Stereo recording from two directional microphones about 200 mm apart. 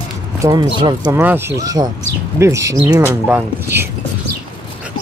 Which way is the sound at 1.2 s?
10° right (ahead or behind).